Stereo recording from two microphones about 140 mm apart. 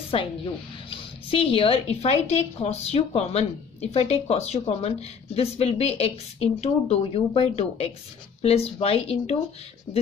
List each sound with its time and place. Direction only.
0.1 s a woman's voice: 40° left (ahead or behind)